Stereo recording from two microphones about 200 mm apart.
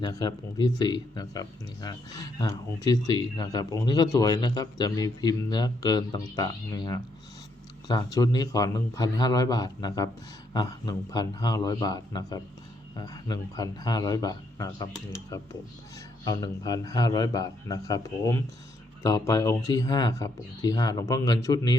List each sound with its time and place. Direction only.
0.1 s a man's voice: 20° left (ahead or behind)